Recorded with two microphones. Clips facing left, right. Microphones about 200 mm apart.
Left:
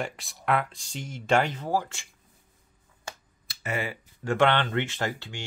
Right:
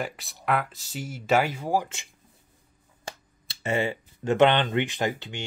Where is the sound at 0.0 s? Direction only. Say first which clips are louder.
Right 1 dB; centre (ahead or behind); by 2.0 s 15° right (ahead or behind).